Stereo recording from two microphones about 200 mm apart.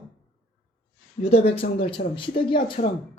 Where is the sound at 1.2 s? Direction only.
30° left (ahead or behind).